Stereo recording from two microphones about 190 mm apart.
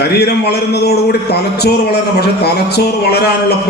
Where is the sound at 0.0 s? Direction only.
55° left (ahead or behind).